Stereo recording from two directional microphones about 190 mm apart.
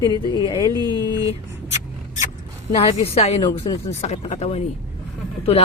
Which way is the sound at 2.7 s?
30° left (ahead or behind).